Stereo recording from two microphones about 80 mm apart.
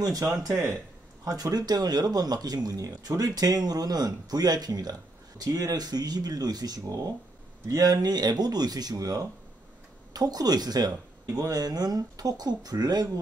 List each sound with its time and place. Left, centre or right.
0.0 s speech: right
0.5 s speech: right
1.2 s speech: right